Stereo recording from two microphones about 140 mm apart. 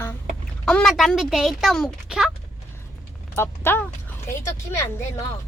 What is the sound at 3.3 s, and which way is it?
A child's voice, 15° left (ahead or behind).